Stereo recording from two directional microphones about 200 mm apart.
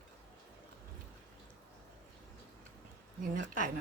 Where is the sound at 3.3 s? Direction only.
40° right (ahead or behind).